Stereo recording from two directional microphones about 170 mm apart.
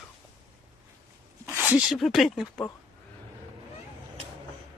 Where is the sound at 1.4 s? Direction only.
10° right (ahead or behind).